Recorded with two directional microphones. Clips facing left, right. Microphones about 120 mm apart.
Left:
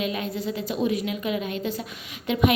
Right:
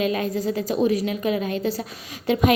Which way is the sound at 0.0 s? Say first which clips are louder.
Right 5 dB; 40° right (ahead or behind).